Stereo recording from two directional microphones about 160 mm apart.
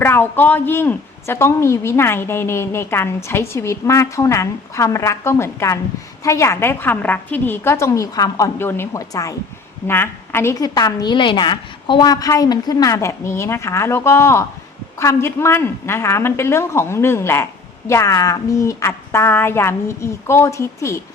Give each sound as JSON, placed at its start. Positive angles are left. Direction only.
{"t": 0.0, "sound": "a woman's voice", "side_deg": 15}